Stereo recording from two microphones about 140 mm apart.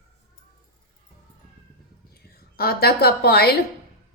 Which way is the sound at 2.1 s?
90° left.